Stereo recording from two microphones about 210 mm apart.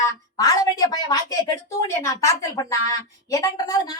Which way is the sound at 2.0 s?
15° left (ahead or behind).